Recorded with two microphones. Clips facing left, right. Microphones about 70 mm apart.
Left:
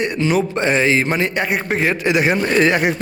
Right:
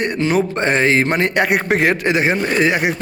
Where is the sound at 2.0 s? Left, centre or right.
Right.